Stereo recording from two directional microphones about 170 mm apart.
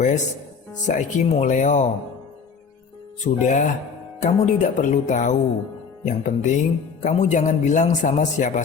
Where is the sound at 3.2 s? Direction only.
45° left (ahead or behind).